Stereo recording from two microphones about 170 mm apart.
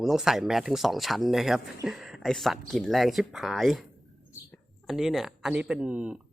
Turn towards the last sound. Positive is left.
turn(degrees=-5)  # may be behind; listen again after turning